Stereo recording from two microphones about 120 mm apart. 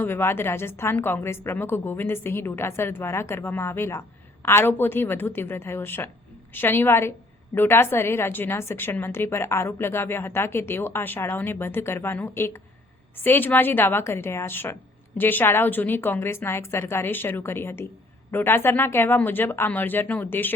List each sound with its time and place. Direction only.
0.0 s a woman's voice: 20° left (ahead or behind)